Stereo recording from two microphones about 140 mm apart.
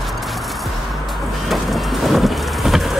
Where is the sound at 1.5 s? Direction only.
Centre (ahead or behind).